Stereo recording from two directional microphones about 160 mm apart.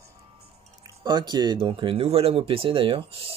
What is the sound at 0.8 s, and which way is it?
Speech, 25° right (ahead or behind).